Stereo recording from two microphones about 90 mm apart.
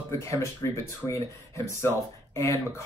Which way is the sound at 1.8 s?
30° left (ahead or behind).